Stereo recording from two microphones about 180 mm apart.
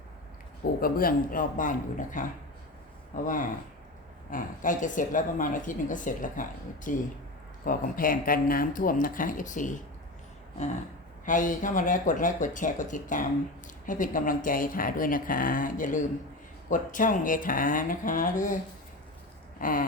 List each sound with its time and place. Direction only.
0.8 s speech: 55° left (ahead or behind)
11.3 s speech: 45° left (ahead or behind)
19.5 s speech: 50° left (ahead or behind)